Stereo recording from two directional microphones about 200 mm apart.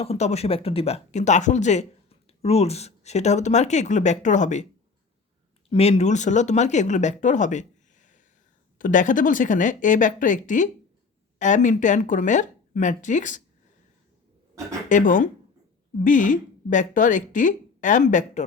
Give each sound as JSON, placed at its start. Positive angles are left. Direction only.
{"t": 0.0, "sound": "speech", "side_deg": 30}
{"t": 5.6, "sound": "speech", "side_deg": 30}
{"t": 14.8, "sound": "speech", "side_deg": 40}